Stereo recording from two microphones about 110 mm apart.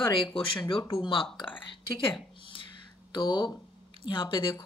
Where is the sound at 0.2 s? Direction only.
50° left (ahead or behind).